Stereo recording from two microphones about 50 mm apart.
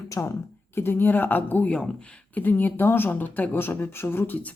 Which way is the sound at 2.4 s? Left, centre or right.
Left.